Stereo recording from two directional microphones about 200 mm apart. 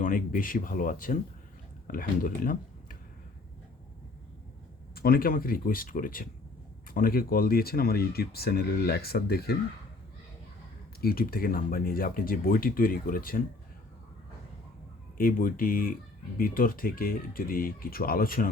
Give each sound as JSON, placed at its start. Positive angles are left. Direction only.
{"t": 0.0, "sound": "speech", "side_deg": 45}
{"t": 4.9, "sound": "speech", "side_deg": 50}
{"t": 11.0, "sound": "speech", "side_deg": 45}
{"t": 15.2, "sound": "speech", "side_deg": 45}